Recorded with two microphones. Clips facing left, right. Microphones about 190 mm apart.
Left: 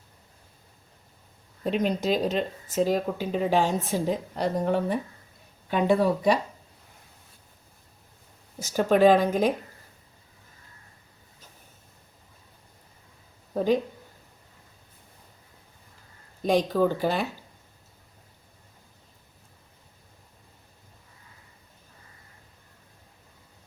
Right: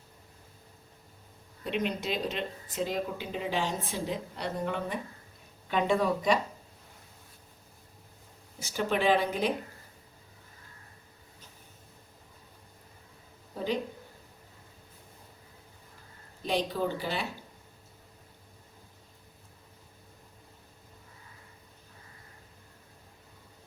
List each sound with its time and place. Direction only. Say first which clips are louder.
1.6 s speech: left 6 dB; 40° left (ahead or behind)
8.5 s speech: left 8 dB; 45° left (ahead or behind)
16.4 s speech: left 8 dB; 45° left (ahead or behind)